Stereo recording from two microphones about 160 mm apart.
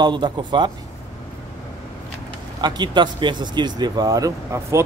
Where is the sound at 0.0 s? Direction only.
30° right (ahead or behind).